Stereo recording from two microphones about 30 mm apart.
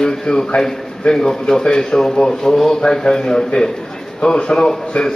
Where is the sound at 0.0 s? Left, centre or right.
Left.